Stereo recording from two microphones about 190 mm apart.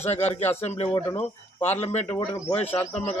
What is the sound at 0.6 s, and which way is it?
A man's voice, 35° left (ahead or behind).